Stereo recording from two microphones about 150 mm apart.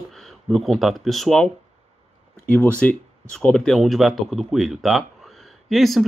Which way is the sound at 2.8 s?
5° left (ahead or behind).